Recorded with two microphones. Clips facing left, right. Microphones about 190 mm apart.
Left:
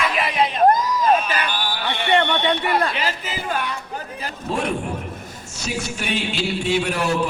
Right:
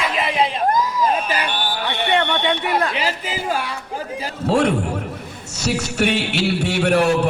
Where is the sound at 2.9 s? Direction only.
10° right (ahead or behind).